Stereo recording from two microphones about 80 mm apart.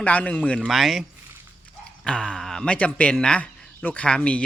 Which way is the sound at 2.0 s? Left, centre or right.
Centre.